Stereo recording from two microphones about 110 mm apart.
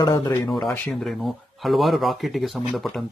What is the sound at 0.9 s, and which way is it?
Speech, centre (ahead or behind).